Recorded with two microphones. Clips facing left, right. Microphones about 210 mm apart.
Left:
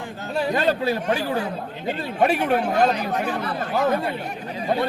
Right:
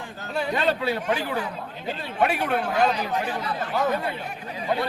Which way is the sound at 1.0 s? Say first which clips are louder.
Left 3 dB; 40° left (ahead or behind).